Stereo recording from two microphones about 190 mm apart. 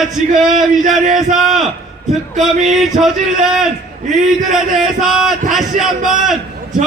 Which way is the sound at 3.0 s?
5° right (ahead or behind).